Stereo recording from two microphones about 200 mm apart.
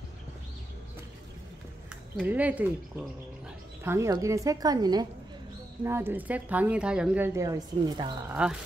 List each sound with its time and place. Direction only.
2.1 s a woman's voice: 5° right (ahead or behind)
3.8 s a woman's voice: 15° right (ahead or behind)
8.3 s speech: 5° right (ahead or behind)